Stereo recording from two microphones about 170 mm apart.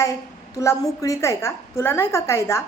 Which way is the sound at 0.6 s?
20° left (ahead or behind).